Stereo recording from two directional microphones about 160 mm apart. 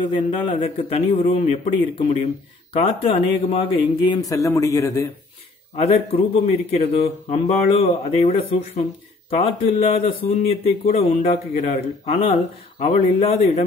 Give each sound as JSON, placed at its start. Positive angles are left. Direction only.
{"t": 0.0, "sound": "speech", "side_deg": 30}
{"t": 4.3, "sound": "a man's voice", "side_deg": 20}
{"t": 5.8, "sound": "speech", "side_deg": 40}
{"t": 9.3, "sound": "speech", "side_deg": 40}